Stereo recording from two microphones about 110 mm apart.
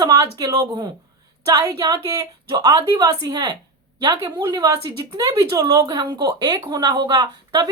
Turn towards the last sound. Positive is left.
turn(degrees=-40)  # may be behind; listen again after turning